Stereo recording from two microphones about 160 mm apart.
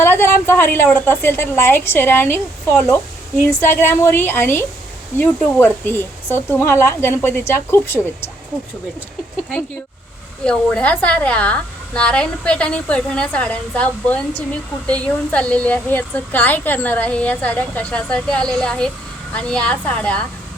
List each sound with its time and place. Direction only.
0.0 s a woman's voice: 15° left (ahead or behind)
10.4 s a woman's voice: 5° left (ahead or behind)